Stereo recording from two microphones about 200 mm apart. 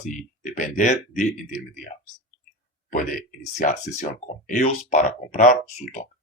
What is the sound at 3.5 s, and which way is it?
Speech, 40° left (ahead or behind).